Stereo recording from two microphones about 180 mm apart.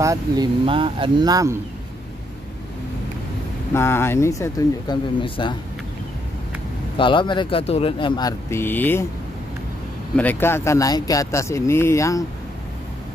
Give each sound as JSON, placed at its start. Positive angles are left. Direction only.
{"t": 0.0, "sound": "speech", "side_deg": -15}
{"t": 0.7, "sound": "speech", "side_deg": -30}
{"t": 3.7, "sound": "speech", "side_deg": 15}
{"t": 7.0, "sound": "speech", "side_deg": 25}
{"t": 10.1, "sound": "speech", "side_deg": 10}